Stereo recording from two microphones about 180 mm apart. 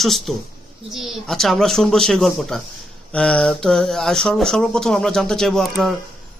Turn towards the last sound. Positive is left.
turn(degrees=0)  # may be behind; listen again after turning